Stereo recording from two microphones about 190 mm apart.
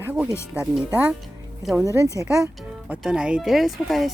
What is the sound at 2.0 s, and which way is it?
Speech, 15° left (ahead or behind).